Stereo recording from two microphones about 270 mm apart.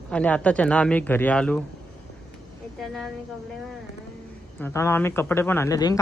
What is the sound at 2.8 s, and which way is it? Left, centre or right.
Speech, centre.